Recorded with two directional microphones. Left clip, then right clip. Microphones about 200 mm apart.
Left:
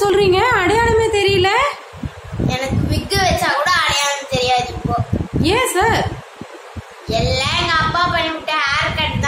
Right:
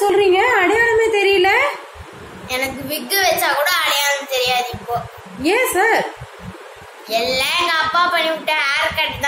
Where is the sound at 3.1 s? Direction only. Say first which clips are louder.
Even; centre (ahead or behind).